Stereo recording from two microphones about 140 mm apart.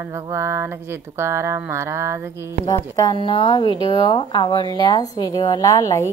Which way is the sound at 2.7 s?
30° left (ahead or behind).